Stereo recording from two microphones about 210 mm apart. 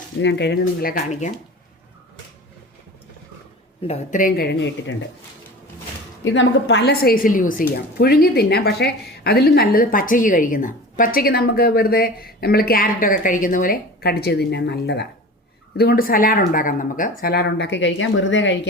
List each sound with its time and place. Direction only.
0.2 s a woman's voice: 55° left (ahead or behind); by 1.3 s 35° left (ahead or behind)
3.8 s a woman's voice: 35° left (ahead or behind); by 4.9 s 55° left (ahead or behind)
6.3 s a woman's voice: 60° left (ahead or behind)